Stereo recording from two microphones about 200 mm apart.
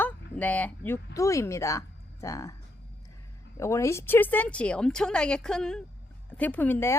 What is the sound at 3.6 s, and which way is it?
Speech, 15° left (ahead or behind).